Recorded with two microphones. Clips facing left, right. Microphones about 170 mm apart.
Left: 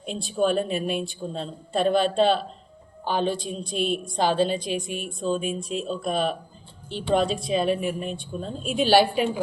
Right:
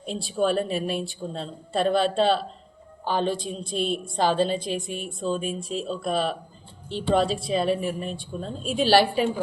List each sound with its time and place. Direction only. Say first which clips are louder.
0.0 s a woman's voice: left 1 dB; centre (ahead or behind)